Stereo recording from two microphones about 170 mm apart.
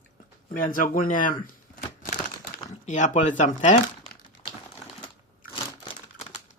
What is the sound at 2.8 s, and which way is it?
Speech, 45° left (ahead or behind).